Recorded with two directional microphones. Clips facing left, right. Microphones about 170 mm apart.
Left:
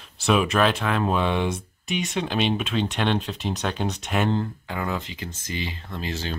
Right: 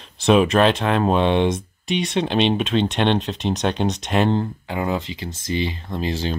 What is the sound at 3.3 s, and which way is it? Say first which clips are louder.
Speech: right 6 dB; 80° right.